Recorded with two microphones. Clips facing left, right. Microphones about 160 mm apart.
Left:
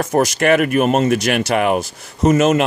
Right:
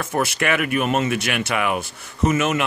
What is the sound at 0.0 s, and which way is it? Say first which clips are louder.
Speech: left 7 dB; 40° left (ahead or behind).